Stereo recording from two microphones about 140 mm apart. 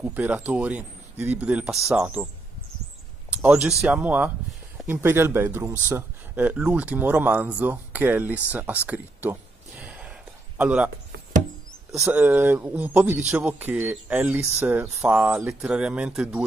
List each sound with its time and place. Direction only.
0.0 s speech: 10° right (ahead or behind)
3.4 s speech: 10° right (ahead or behind)
12.1 s speech: 10° right (ahead or behind)